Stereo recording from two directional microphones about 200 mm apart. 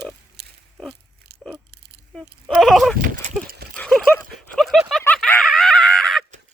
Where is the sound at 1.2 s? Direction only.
50° right (ahead or behind).